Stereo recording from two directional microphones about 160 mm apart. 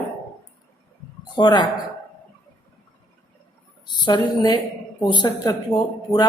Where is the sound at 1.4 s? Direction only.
25° left (ahead or behind).